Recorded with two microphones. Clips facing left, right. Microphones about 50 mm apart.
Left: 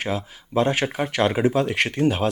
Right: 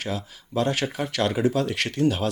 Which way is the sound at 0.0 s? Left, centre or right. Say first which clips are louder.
Left 4 dB; left.